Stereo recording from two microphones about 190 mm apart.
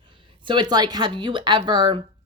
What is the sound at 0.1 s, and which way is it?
Speech, 25° right (ahead or behind).